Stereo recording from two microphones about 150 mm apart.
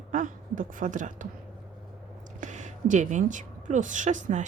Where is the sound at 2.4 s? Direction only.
55° right (ahead or behind).